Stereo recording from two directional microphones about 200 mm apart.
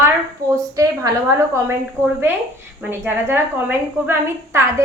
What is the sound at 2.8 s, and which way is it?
A woman's voice, 10° right (ahead or behind).